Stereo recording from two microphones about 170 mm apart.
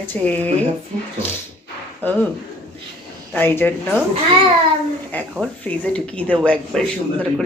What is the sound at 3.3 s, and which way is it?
Speech, 10° left (ahead or behind).